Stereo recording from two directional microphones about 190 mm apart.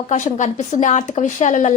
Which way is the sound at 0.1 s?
40° left (ahead or behind).